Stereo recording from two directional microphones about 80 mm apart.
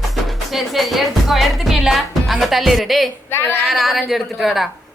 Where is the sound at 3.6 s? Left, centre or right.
Centre.